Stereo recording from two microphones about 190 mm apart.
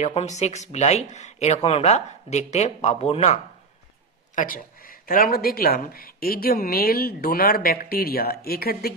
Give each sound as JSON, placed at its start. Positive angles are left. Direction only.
{"t": 0.0, "sound": "speech", "side_deg": 35}
{"t": 4.4, "sound": "speech", "side_deg": 45}